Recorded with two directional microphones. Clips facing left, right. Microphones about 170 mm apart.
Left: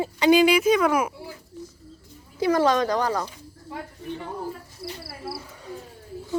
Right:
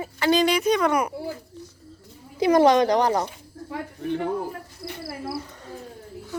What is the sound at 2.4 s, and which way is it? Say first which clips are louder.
Speech: right 4 dB; 15° right (ahead or behind).